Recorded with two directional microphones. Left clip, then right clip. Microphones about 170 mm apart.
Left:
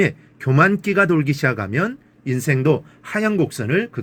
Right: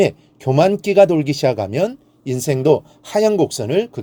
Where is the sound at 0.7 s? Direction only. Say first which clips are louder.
Right 5 dB; 30° right (ahead or behind).